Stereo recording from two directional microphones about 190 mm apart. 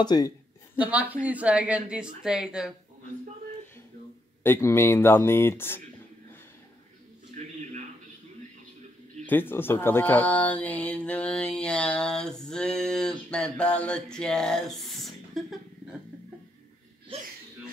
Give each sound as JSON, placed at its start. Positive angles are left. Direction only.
{"t": 0.0, "sound": "speech", "side_deg": 20}
{"t": 0.7, "sound": "speech", "side_deg": -5}
{"t": 4.4, "sound": "speech", "side_deg": 10}
{"t": 7.4, "sound": "a sound", "side_deg": -35}
{"t": 9.2, "sound": "speech", "side_deg": 10}
{"t": 17.1, "sound": "speech", "side_deg": -30}